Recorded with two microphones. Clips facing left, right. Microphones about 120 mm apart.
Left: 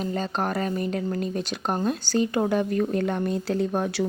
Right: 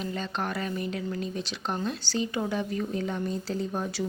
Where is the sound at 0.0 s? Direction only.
40° left (ahead or behind).